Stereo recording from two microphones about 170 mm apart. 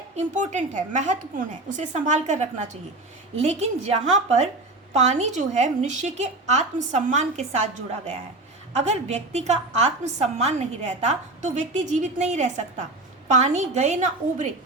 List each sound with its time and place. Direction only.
0.2 s a woman's voice: 45° right (ahead or behind)